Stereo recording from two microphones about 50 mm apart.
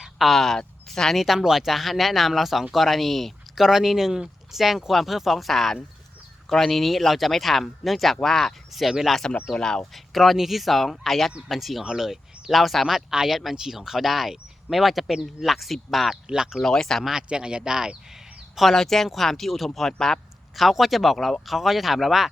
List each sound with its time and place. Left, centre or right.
0.2 s speech: centre
1.2 s speech: centre
9.5 s speech: centre
9.9 s speech: centre
16.3 s speech: centre
16.6 s speech: centre
17.0 s speech: centre
17.2 s speech: centre
18.7 s speech: centre
20.6 s speech: centre